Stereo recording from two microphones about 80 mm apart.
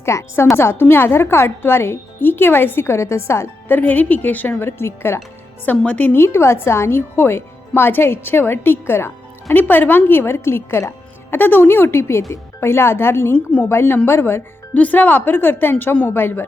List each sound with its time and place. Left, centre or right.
0.0 s a woman's voice: left
3.8 s a woman's voice: left
5.6 s a woman's voice: centre
13.3 s a woman's voice: centre
13.7 s a woman's voice: left
14.7 s a woman's voice: centre